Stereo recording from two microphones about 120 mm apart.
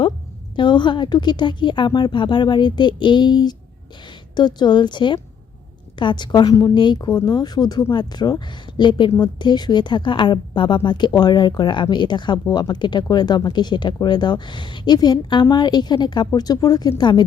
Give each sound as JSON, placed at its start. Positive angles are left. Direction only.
{"t": 0.5, "sound": "a woman's voice", "side_deg": 40}